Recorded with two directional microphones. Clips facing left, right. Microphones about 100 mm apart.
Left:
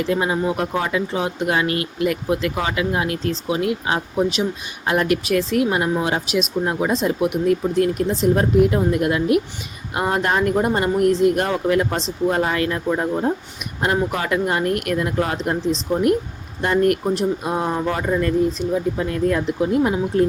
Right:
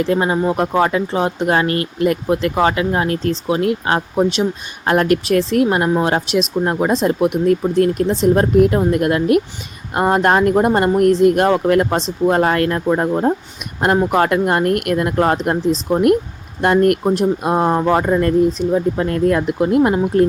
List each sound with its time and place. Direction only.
0.0 s speech: 45° right (ahead or behind)
14.1 s speech: 55° right (ahead or behind)